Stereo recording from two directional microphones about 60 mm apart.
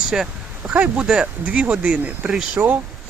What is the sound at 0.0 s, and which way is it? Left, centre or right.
Speech, centre.